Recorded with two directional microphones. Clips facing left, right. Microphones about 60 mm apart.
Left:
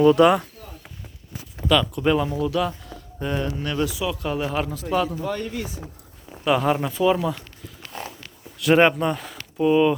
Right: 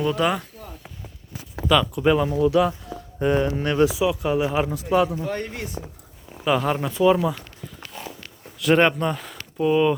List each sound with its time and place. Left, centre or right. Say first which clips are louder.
0.0 s a sound: left 7 dB; centre
1.6 s speech: right 1 dB; centre; by 4.1 s right
4.1 s speech: right 3 dB; centre
5.4 s speech: left 2 dB; right
6.4 s speech: left 1 dB; centre
8.5 s speech: left 1 dB; centre